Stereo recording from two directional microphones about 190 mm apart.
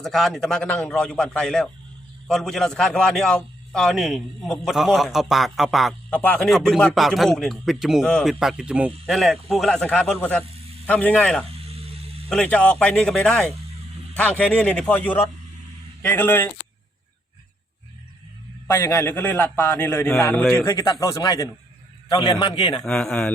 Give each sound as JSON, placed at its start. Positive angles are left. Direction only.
{"t": 0.0, "sound": "a man's voice", "side_deg": 0}
{"t": 11.4, "sound": "a sound", "side_deg": -30}
{"t": 12.3, "sound": "a man's voice", "side_deg": 5}
{"t": 18.7, "sound": "a man's voice", "side_deg": 15}
{"t": 22.9, "sound": "a man's voice", "side_deg": 5}